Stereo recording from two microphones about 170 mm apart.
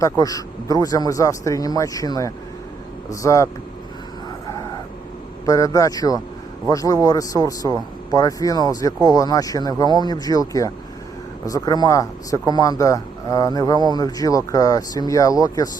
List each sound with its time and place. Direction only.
0.0 s speech: 20° left (ahead or behind)
5.5 s speech: 20° left (ahead or behind)